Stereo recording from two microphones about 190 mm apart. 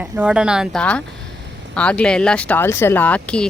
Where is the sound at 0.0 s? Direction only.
5° right (ahead or behind).